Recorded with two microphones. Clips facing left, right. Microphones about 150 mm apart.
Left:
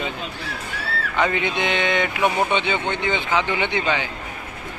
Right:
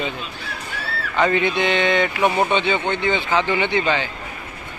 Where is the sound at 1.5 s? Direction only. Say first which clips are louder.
Right 3 dB; 15° left (ahead or behind).